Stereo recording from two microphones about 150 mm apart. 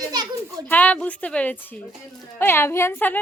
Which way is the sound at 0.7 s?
10° left (ahead or behind).